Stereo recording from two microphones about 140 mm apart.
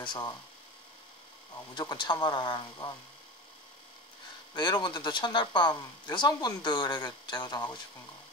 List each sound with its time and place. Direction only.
0.0 s speech: 35° left (ahead or behind)
1.8 s speech: 30° left (ahead or behind)
4.6 s speech: 30° left (ahead or behind)